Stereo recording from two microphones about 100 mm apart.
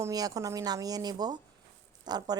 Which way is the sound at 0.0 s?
40° right (ahead or behind).